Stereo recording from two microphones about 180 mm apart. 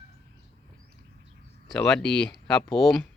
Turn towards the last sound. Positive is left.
turn(degrees=0)  # may be behind; listen again after turning